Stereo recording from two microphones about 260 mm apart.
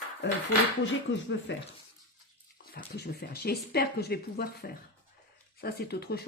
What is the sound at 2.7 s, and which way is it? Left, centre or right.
Speech, left.